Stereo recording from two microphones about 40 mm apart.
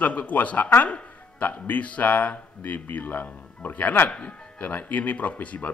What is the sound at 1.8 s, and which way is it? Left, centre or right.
A man's voice, left.